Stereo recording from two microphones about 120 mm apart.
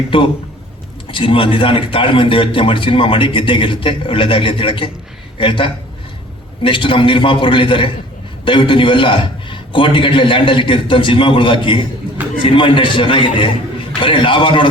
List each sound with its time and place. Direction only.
0.1 s a man's voice: 45° left (ahead or behind)